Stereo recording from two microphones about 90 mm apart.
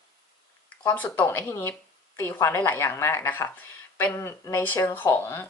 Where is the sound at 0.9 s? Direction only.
20° left (ahead or behind).